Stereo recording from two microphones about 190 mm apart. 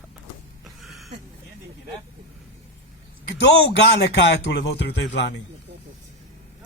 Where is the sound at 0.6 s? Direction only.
Centre (ahead or behind).